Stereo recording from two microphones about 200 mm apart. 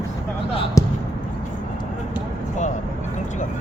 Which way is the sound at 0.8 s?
15° left (ahead or behind).